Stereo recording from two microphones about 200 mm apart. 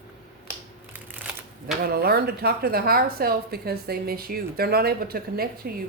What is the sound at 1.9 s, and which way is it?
Speech, 50° right (ahead or behind).